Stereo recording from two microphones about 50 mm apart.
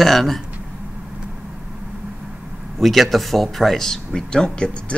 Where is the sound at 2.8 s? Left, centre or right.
Centre.